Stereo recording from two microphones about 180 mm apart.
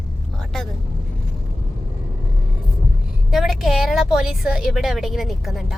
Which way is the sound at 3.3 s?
Centre (ahead or behind).